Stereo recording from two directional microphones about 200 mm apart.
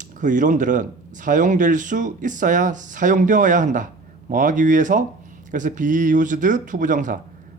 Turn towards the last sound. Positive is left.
turn(degrees=-40)  # may be behind; listen again after turning